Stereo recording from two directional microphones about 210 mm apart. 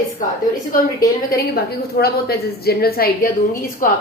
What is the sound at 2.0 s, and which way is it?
A woman's voice, 50° left (ahead or behind).